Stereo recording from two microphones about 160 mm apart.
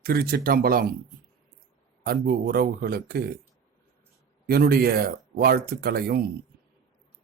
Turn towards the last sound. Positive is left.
turn(degrees=-75)  # may be behind; listen again after turning